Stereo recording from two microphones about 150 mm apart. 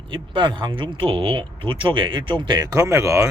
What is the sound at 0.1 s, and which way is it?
Speech, 35° right (ahead or behind).